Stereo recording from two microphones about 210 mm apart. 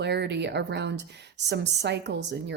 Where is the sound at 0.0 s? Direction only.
55° right (ahead or behind).